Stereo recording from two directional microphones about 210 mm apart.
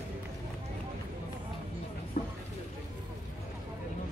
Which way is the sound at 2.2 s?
40° left (ahead or behind).